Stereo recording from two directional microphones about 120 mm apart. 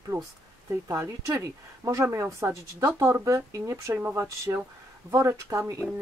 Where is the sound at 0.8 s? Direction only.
25° right (ahead or behind).